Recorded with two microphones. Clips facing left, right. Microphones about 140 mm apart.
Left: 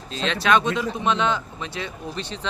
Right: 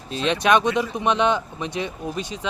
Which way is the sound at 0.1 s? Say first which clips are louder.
Right 2 dB; 20° right (ahead or behind).